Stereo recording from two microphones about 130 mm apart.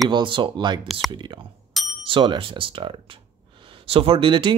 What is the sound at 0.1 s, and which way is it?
Speech, 40° right (ahead or behind).